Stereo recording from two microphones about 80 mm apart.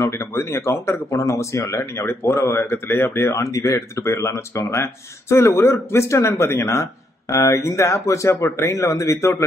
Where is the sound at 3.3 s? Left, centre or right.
Left.